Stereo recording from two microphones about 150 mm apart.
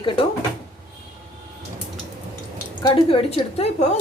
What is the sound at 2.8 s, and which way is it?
Speech, 40° left (ahead or behind).